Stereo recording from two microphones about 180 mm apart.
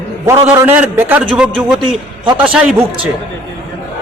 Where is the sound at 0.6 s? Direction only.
10° right (ahead or behind).